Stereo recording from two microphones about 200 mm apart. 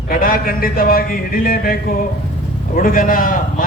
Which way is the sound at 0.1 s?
45° left (ahead or behind).